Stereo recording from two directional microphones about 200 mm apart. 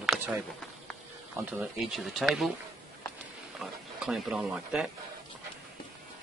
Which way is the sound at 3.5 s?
Centre (ahead or behind).